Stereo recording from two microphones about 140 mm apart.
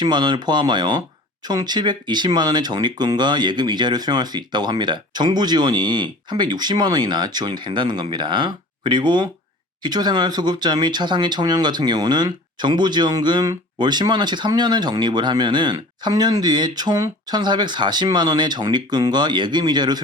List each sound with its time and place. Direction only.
0.0 s speech: 30° right (ahead or behind)